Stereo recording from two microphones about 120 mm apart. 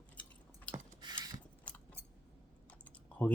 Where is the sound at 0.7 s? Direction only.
40° right (ahead or behind).